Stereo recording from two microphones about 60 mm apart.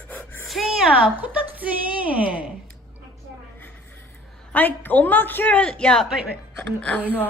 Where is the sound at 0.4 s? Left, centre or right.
Centre.